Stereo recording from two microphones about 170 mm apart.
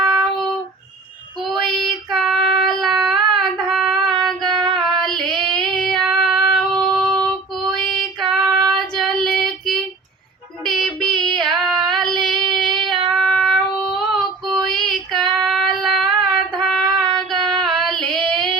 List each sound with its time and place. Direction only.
0.0 s child singing: centre (ahead or behind)
1.5 s child singing: centre (ahead or behind)
4.4 s child singing: 25° right (ahead or behind)
5.0 s child singing: centre (ahead or behind)
8.2 s female singing: centre (ahead or behind)
8.7 s child singing: centre (ahead or behind)
17.6 s female singing: centre (ahead or behind)